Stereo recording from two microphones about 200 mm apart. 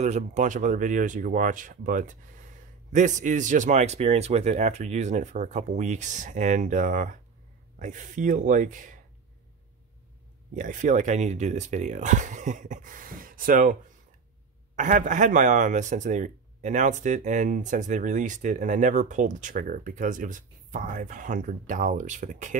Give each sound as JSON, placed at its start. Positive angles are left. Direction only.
{"t": 0.0, "sound": "speech", "side_deg": -35}
{"t": 10.5, "sound": "speech", "side_deg": -40}
{"t": 14.8, "sound": "speech", "side_deg": -40}